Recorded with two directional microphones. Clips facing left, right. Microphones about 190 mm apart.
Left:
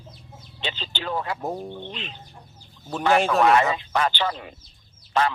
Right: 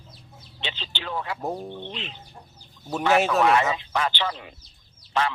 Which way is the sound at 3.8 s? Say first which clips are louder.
Left 3 dB; 45° left (ahead or behind).